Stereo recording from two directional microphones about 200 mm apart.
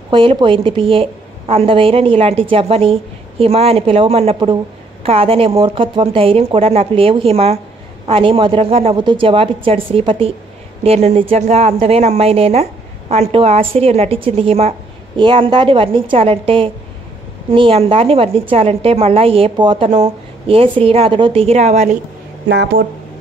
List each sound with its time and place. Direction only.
0.1 s a woman's voice: 25° right (ahead or behind)
22.5 s speech: 55° right (ahead or behind)